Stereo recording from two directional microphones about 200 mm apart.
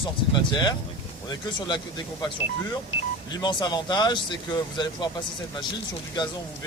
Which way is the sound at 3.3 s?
20° left (ahead or behind).